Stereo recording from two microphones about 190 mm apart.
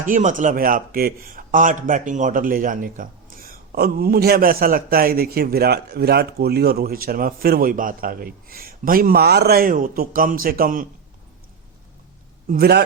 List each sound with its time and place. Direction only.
0.0 s a man's voice: 40° right (ahead or behind)
12.5 s a man's voice: 55° right (ahead or behind)